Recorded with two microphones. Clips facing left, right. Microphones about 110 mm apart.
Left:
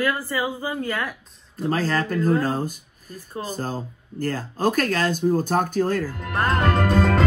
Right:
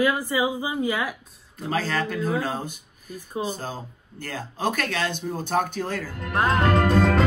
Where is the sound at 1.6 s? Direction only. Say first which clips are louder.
Left 3 dB; 40° left (ahead or behind).